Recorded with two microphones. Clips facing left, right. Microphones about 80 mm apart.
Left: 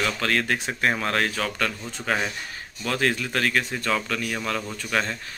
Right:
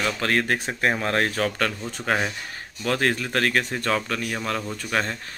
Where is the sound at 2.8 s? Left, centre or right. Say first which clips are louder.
Right 1 dB; right.